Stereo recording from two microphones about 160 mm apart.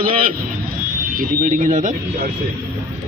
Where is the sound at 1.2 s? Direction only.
55° right (ahead or behind).